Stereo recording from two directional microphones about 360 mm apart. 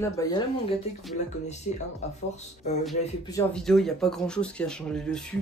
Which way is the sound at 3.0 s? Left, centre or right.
Centre.